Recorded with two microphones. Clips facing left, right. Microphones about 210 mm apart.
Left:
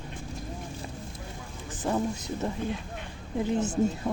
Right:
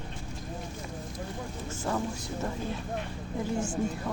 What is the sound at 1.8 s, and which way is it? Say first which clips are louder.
Speech: left 4 dB; 20° left (ahead or behind).